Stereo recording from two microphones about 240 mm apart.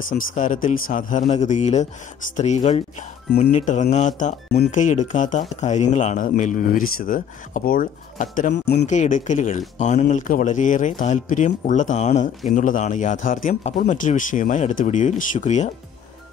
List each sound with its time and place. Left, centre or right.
0.1 s speech: left
8.5 s speech: left
8.8 s speech: left